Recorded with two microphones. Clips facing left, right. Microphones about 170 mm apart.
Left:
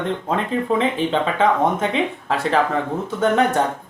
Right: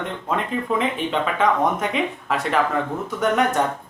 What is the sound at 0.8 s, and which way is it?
Speech, 30° left (ahead or behind).